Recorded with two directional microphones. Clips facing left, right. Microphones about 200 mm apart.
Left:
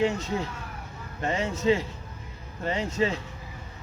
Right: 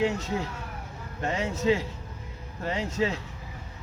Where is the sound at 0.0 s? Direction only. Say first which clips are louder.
Left 1 dB; 5° right (ahead or behind).